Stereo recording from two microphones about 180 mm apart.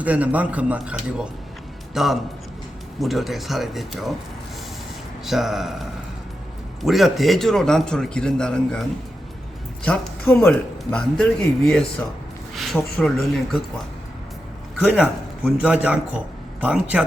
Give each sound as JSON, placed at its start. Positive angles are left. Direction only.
{"t": 0.0, "sound": "a man's voice", "side_deg": -10}
{"t": 5.2, "sound": "a man's voice", "side_deg": 0}
{"t": 9.8, "sound": "a man's voice", "side_deg": 5}
{"t": 14.8, "sound": "a man's voice", "side_deg": -10}